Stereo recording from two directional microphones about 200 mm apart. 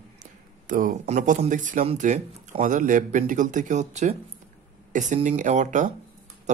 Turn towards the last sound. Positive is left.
turn(degrees=-35)  # may be behind; listen again after turning